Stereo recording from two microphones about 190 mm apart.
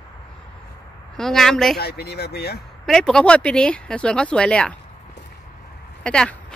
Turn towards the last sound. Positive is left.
turn(degrees=5)  # may be behind; listen again after turning